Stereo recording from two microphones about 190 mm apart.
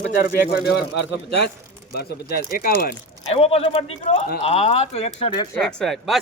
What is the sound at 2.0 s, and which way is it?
Speech, 55° left (ahead or behind).